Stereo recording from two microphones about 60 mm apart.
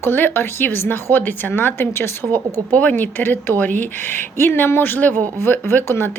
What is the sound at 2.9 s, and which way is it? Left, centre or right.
A woman's voice, left.